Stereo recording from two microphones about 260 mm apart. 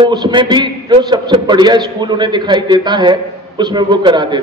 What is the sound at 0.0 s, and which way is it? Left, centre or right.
A man's voice, centre.